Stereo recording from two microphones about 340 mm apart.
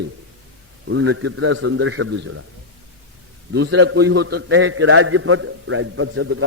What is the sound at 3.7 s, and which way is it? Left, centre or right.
A man's voice, right.